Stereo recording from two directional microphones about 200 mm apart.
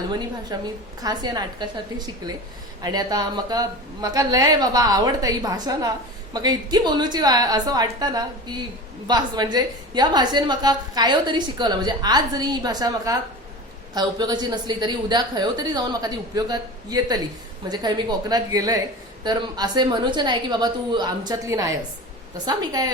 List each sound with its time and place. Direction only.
0.5 s a woman's voice: 20° right (ahead or behind)